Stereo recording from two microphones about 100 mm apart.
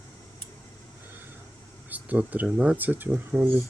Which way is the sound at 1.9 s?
15° right (ahead or behind).